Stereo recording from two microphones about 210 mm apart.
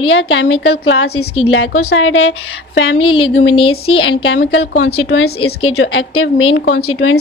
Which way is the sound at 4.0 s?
65° left (ahead or behind).